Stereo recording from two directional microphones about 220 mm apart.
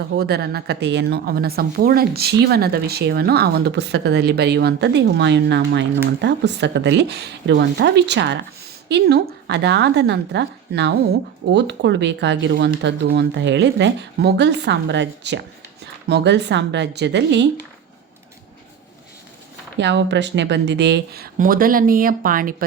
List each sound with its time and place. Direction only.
0.2 s speech: 45° right (ahead or behind)
19.8 s speech: 50° right (ahead or behind)